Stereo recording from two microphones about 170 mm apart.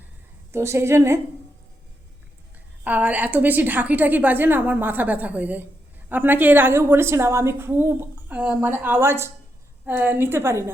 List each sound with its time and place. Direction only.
0.5 s a woman's voice: 15° right (ahead or behind)
2.8 s a woman's voice: 10° right (ahead or behind)